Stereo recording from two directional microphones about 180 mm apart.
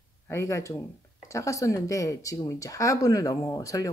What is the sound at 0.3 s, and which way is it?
Speech, 15° left (ahead or behind).